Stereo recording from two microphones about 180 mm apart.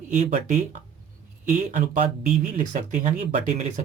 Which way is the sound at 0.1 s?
45° right (ahead or behind).